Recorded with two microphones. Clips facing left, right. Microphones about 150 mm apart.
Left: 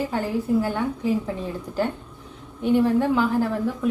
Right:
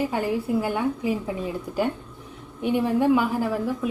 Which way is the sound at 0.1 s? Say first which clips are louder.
Left 1 dB; 10° right (ahead or behind).